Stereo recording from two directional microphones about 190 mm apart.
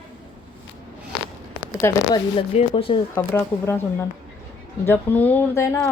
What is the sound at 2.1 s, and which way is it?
Speech, 25° left (ahead or behind).